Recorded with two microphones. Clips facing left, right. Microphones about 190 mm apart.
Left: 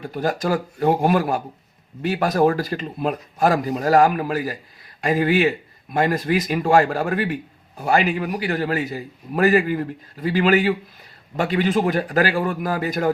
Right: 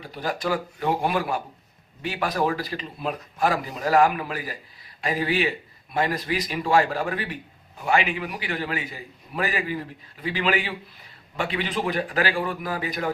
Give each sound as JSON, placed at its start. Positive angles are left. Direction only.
{"t": 0.0, "sound": "a man's voice", "side_deg": 45}